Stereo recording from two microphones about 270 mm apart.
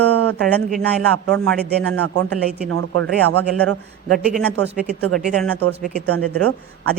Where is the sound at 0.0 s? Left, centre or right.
Right.